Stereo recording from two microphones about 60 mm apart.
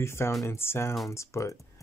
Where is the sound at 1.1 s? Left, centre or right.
Left.